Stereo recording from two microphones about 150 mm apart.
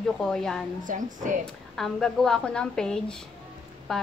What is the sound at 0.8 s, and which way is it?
Speech, 60° right (ahead or behind).